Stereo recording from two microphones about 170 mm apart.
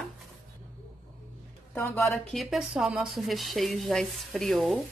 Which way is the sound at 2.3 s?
Centre (ahead or behind).